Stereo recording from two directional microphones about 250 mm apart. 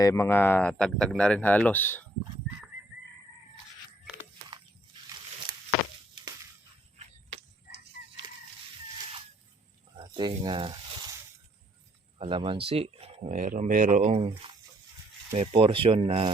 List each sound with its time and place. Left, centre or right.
0.0 s speech: centre
9.9 s speech: centre
12.2 s speech: centre